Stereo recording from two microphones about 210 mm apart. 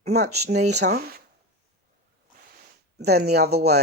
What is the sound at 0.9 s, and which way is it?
Speech, 50° right (ahead or behind).